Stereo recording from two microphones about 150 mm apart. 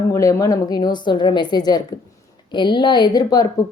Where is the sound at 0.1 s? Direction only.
20° left (ahead or behind).